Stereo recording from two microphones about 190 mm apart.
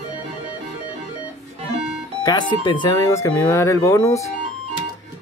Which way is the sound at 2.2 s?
20° left (ahead or behind).